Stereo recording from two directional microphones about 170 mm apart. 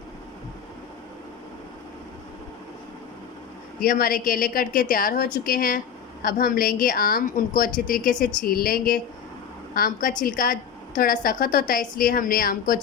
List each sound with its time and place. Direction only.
3.8 s a woman's voice: 60° left (ahead or behind)